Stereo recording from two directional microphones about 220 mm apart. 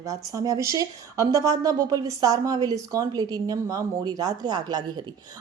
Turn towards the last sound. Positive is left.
turn(degrees=-20)  # may be behind; listen again after turning